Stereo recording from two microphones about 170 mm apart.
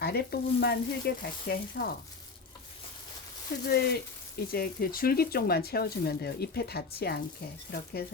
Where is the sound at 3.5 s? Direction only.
65° left (ahead or behind).